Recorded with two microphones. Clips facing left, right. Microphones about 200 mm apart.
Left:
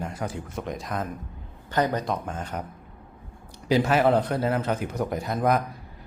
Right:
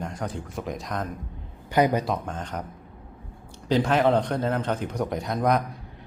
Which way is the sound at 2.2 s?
5° left (ahead or behind).